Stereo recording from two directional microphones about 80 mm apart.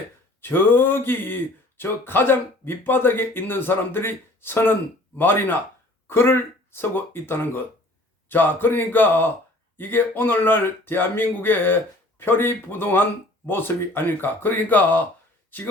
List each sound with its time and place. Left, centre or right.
0.4 s speech: left